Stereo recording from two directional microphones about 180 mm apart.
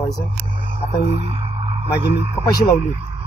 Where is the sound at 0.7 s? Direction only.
35° right (ahead or behind).